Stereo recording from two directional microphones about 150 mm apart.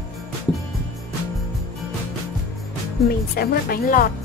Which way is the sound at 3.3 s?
75° left (ahead or behind).